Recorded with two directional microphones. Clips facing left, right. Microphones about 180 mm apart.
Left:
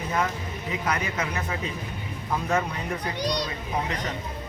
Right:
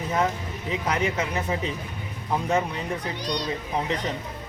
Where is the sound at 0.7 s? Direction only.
25° right (ahead or behind).